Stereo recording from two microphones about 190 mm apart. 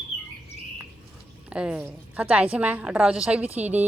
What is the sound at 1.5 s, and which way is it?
Speech, 5° right (ahead or behind).